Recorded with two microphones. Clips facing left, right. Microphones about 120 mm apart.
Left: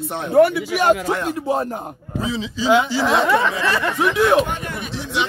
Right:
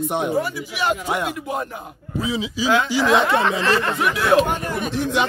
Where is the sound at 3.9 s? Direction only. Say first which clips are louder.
Left 4 dB; 20° left (ahead or behind).